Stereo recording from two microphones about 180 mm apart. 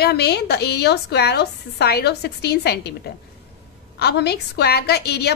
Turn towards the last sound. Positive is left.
turn(degrees=65)  # may be behind; listen again after turning